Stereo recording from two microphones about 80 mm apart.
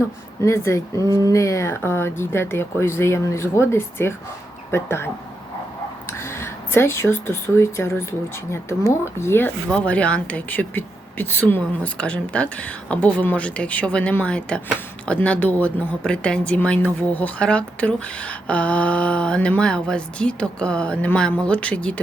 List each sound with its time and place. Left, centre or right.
0.4 s speech: left
6.1 s speech: left
9.6 s speech: centre
11.9 s speech: centre